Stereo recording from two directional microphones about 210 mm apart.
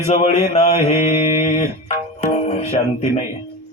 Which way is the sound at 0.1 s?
30° left (ahead or behind).